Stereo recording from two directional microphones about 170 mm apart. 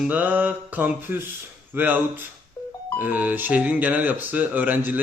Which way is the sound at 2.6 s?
20° left (ahead or behind).